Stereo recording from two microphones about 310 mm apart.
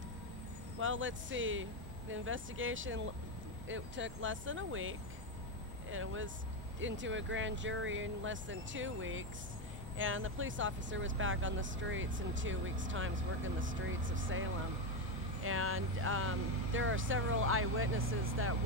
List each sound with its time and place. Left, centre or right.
0.7 s speech: right